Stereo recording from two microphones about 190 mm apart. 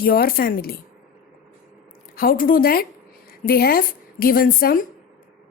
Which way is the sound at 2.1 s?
50° left (ahead or behind).